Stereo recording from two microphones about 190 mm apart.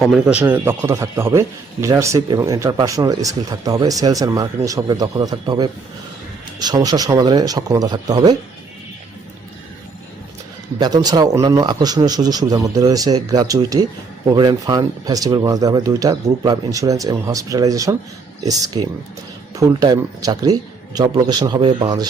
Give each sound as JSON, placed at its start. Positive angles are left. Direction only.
{"t": 0.0, "sound": "speech", "side_deg": -5}
{"t": 10.8, "sound": "speech", "side_deg": -20}